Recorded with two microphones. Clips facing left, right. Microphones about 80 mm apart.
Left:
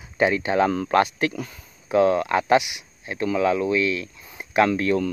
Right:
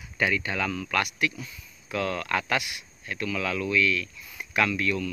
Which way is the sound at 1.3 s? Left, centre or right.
Left.